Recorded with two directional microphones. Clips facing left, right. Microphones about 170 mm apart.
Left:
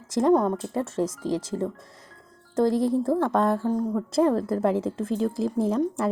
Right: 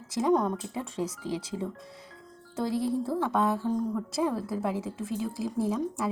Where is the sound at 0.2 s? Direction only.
50° left (ahead or behind).